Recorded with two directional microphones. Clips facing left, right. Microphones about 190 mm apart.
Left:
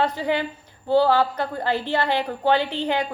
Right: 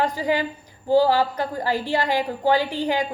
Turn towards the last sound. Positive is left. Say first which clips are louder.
# right 1 dB
turn(degrees=-10)  # may be behind; listen again after turning